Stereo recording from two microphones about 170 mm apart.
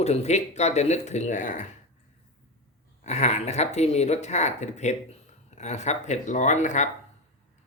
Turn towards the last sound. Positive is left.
turn(degrees=45)  # may be behind; listen again after turning